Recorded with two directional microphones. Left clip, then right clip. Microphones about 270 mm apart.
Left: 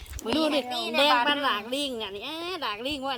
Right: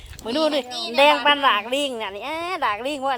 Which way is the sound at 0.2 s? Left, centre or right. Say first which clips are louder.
Right 4 dB; centre.